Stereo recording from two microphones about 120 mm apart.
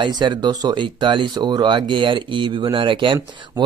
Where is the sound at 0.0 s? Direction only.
40° right (ahead or behind).